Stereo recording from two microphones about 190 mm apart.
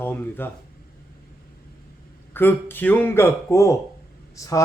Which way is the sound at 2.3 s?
10° left (ahead or behind).